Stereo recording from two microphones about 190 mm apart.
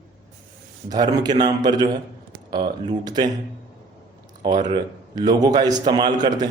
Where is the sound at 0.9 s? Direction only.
20° right (ahead or behind).